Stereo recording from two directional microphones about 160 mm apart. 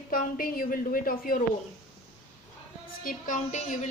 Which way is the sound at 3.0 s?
55° left (ahead or behind).